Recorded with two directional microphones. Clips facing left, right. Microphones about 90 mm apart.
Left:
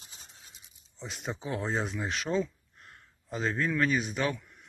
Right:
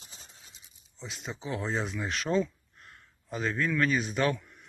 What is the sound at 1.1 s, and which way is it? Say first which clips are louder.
Speech: left 3 dB; 45° left (ahead or behind).